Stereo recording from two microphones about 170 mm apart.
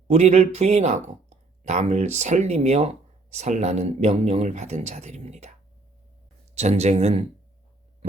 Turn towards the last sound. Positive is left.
turn(degrees=-40)  # may be behind; listen again after turning